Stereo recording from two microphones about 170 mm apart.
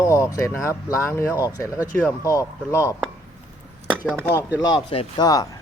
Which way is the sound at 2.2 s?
20° left (ahead or behind).